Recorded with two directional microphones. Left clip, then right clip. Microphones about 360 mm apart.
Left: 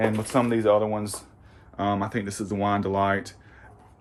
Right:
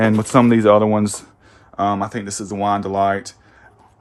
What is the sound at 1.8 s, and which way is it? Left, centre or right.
Speech, centre.